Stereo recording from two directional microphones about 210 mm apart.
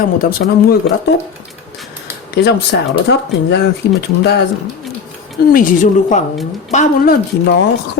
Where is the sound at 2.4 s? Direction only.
55° left (ahead or behind).